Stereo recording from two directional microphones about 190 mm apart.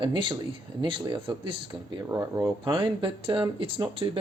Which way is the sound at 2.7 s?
25° right (ahead or behind).